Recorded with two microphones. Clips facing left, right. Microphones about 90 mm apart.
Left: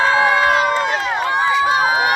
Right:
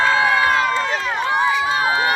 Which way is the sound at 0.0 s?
15° left (ahead or behind).